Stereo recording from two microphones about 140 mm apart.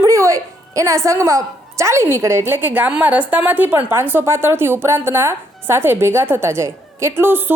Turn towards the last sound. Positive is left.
turn(degrees=-15)  # may be behind; listen again after turning